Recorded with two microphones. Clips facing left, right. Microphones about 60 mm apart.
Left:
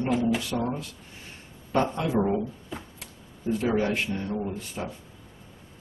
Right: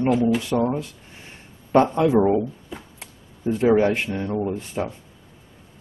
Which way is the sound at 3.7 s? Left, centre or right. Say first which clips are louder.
Right 7 dB; right.